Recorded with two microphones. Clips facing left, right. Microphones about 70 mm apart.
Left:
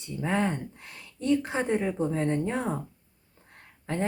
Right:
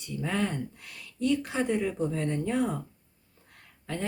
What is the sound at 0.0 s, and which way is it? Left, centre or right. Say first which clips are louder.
Speech: left 3 dB; left.